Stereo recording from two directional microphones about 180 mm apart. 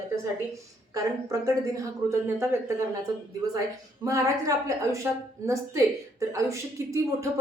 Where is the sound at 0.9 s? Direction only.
20° right (ahead or behind).